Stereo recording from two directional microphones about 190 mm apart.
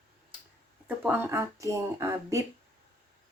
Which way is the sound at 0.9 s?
10° right (ahead or behind).